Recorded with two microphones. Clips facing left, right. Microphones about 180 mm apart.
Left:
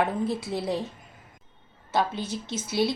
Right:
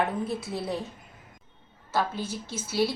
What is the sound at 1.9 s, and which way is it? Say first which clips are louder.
A woman's voice: left 2 dB; 20° left (ahead or behind).